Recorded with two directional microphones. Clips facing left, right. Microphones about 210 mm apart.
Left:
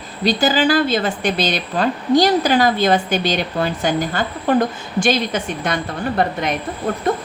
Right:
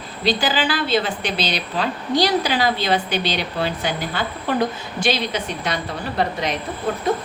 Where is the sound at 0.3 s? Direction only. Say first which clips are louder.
Left 5 dB; 45° left (ahead or behind).